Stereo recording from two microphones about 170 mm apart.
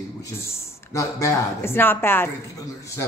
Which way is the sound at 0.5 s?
15° left (ahead or behind).